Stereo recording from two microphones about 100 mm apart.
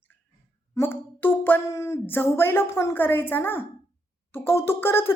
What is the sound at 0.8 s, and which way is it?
Speech, 20° left (ahead or behind).